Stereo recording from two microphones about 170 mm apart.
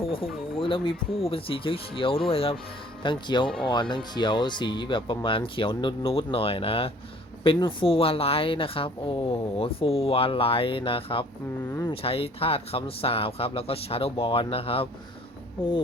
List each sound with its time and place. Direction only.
0.0 s a sound: 30° left (ahead or behind)
0.5 s speech: 30° left (ahead or behind)
11.6 s speech: 10° left (ahead or behind)
11.9 s speech: 35° left (ahead or behind)